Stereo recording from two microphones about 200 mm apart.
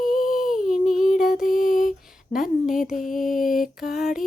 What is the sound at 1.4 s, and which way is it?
Humming, 45° left (ahead or behind).